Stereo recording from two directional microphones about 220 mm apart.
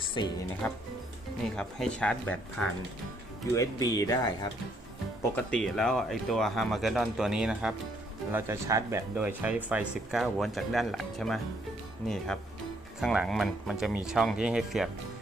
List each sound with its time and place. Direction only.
0.2 s speech: 20° left (ahead or behind)
0.6 s speech: 10° left (ahead or behind)
5.4 s speech: 5° left (ahead or behind)